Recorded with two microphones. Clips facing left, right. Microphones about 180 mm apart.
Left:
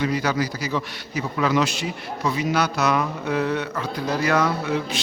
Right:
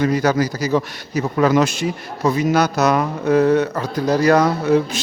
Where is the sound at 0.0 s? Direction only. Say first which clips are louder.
Right 6 dB; 45° right (ahead or behind).